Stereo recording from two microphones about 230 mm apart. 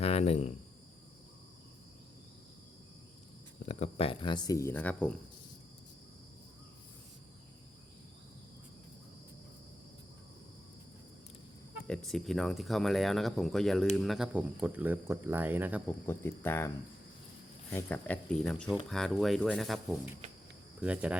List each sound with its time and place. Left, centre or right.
0.0 s cricket: left
3.7 s speech: left; by 5.2 s centre
11.9 s speech: centre
15.9 s speech: centre